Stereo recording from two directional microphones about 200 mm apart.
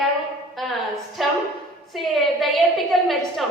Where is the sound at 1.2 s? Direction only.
Centre (ahead or behind).